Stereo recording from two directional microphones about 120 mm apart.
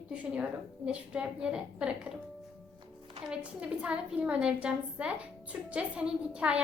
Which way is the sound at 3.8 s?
10° right (ahead or behind).